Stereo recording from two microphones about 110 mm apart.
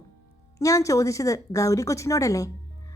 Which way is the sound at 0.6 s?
30° left (ahead or behind).